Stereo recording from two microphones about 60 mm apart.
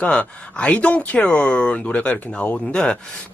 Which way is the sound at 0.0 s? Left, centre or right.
Centre.